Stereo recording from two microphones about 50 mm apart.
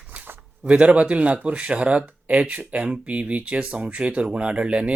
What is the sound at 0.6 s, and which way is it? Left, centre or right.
Speech, right.